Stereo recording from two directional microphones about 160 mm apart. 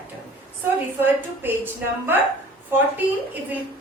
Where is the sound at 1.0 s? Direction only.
10° right (ahead or behind).